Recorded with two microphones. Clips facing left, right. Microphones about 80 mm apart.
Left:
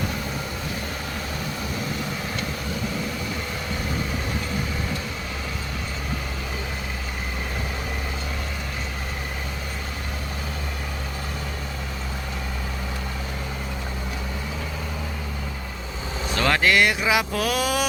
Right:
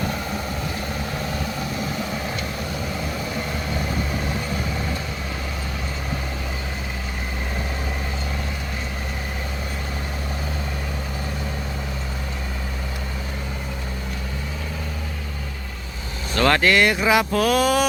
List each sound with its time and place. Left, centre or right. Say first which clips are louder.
16.3 s speech: right 3 dB; centre